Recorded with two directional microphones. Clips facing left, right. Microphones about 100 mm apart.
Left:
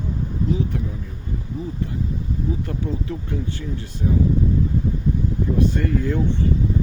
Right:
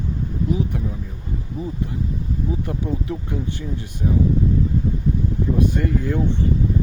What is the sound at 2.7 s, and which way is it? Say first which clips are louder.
Speech: right 2 dB; 15° right (ahead or behind).